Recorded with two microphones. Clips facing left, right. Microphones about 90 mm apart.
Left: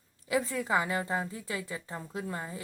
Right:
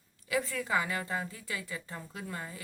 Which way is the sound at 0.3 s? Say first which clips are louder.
Left 3 dB; 25° left (ahead or behind).